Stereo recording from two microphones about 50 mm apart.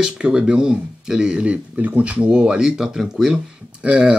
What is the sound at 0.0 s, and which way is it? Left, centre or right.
Speech, centre.